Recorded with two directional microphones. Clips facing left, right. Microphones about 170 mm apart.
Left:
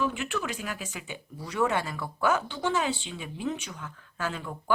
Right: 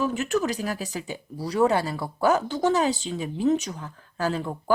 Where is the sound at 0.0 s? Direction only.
40° right (ahead or behind).